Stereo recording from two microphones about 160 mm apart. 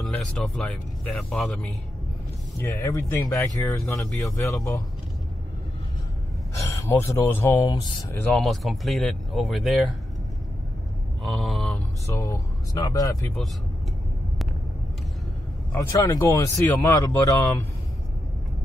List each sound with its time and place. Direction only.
0.0 s speech: 5° left (ahead or behind)
2.6 s speech: 15° left (ahead or behind)
6.5 s speech: 20° left (ahead or behind)
8.3 s speech: centre (ahead or behind)
11.2 s mantra: centre (ahead or behind)
12.1 s speech: 15° left (ahead or behind)
15.9 s speech: 25° left (ahead or behind)
16.5 s speech: 10° left (ahead or behind)